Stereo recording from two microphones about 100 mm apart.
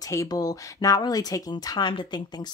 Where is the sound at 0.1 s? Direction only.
35° left (ahead or behind).